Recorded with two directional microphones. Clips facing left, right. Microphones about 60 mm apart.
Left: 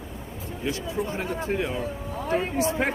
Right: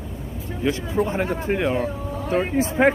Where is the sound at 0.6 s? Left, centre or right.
Right.